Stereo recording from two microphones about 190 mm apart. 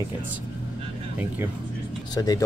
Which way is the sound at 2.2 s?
20° left (ahead or behind).